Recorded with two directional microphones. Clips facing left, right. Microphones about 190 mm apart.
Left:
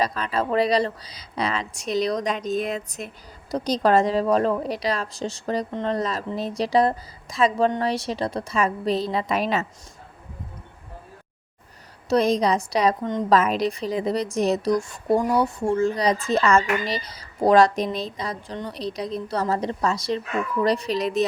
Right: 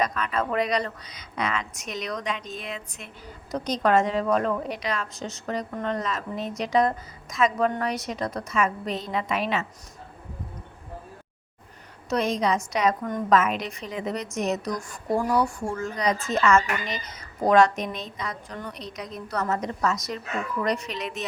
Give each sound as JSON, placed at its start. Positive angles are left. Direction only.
{"t": 0.0, "sound": "a woman's voice", "side_deg": 30}
{"t": 12.0, "sound": "a woman's voice", "side_deg": 35}